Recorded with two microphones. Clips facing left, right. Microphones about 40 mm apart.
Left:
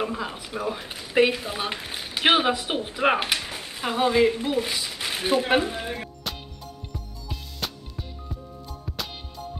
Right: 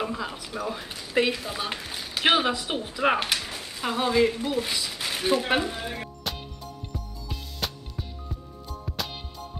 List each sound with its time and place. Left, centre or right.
0.1 s speech: centre
6.2 s music: centre